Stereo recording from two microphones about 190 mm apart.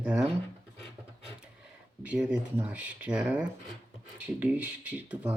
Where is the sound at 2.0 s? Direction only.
5° right (ahead or behind).